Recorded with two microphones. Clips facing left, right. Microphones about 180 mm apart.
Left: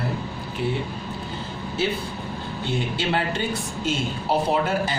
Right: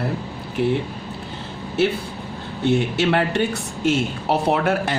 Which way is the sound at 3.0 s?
65° right (ahead or behind).